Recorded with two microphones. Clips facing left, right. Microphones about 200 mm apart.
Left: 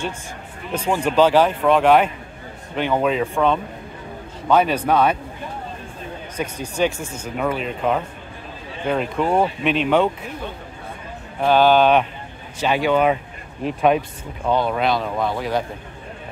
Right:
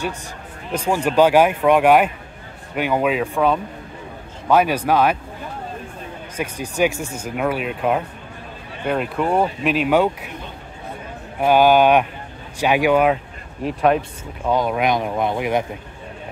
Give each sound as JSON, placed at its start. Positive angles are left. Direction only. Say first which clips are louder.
{"t": 0.7, "sound": "speech", "louder": "right 1 dB", "side_deg": -10}
{"t": 6.3, "sound": "speech", "louder": "right 1 dB", "side_deg": -10}
{"t": 11.4, "sound": "speech", "louder": "right 1 dB", "side_deg": -10}
{"t": 14.5, "sound": "speech", "louder": "right 1 dB", "side_deg": -10}